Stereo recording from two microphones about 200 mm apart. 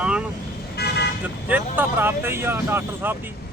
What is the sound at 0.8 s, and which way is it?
Car, 55° left (ahead or behind).